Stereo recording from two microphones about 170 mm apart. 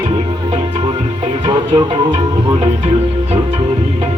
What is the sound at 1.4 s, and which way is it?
Speech, 30° right (ahead or behind).